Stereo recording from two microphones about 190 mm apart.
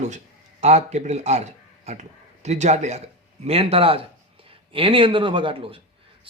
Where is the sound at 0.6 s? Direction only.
35° right (ahead or behind).